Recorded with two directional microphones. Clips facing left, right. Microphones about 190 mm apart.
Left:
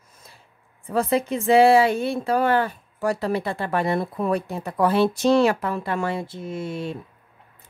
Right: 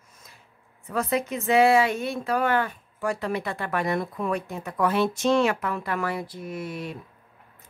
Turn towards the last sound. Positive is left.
turn(degrees=25)  # may be behind; listen again after turning